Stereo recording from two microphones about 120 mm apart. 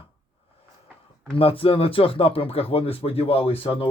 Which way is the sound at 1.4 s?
50° left (ahead or behind).